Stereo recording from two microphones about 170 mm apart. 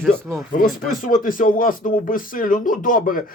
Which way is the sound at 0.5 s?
55° left (ahead or behind).